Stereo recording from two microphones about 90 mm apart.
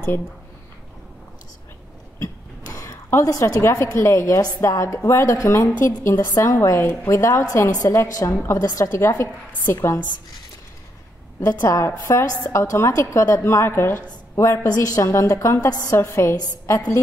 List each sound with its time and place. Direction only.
2.7 s a woman's voice: 35° left (ahead or behind)
11.3 s a woman's voice: 25° left (ahead or behind)
14.3 s a woman's voice: 35° left (ahead or behind)
16.0 s a woman's voice: 30° left (ahead or behind)